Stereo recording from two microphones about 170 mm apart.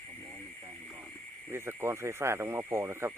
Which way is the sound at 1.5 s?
15° right (ahead or behind).